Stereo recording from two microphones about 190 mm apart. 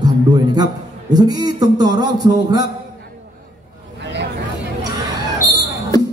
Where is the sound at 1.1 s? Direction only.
20° right (ahead or behind).